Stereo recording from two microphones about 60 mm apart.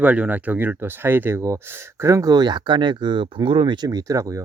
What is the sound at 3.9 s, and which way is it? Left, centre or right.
Speech, right.